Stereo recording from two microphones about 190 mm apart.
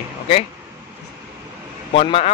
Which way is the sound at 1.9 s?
30° left (ahead or behind).